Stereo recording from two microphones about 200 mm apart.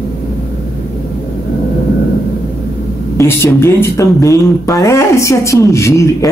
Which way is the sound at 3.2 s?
15° left (ahead or behind).